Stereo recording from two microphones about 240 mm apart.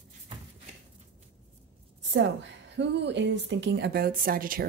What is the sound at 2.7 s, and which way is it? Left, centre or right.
Speech, right.